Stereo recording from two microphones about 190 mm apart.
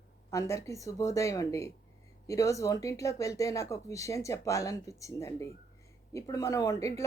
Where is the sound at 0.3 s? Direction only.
15° left (ahead or behind).